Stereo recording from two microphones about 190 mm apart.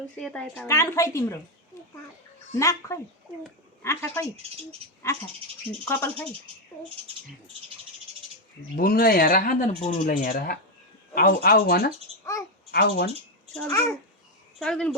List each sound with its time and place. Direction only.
0.2 s speech: 5° left (ahead or behind)
0.7 s a woman's voice: 15° left (ahead or behind)
2.6 s a woman's voice: 15° left (ahead or behind)
5.9 s a woman's voice: 10° left (ahead or behind)
8.7 s speech: 50° left (ahead or behind)
12.2 s speech: 15° left (ahead or behind)
12.7 s speech: 60° left (ahead or behind)
13.7 s a woman's voice: 15° left (ahead or behind)
14.6 s speech: 5° left (ahead or behind)